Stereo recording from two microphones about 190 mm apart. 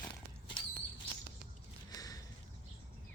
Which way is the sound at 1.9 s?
20° left (ahead or behind).